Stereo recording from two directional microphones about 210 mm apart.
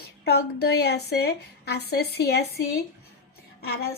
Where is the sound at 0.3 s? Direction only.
50° left (ahead or behind).